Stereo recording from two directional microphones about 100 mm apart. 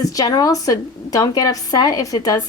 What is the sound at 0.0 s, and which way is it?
A woman's voice, 35° left (ahead or behind).